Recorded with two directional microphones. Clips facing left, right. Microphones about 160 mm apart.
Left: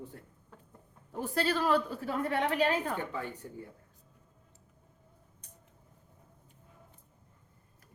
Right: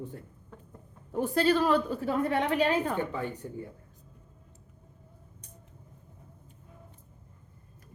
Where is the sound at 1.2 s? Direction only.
20° right (ahead or behind).